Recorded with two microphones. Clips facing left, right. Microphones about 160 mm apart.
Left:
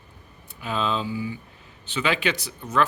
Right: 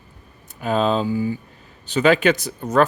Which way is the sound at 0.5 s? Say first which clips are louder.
Right 7 dB; 45° right (ahead or behind).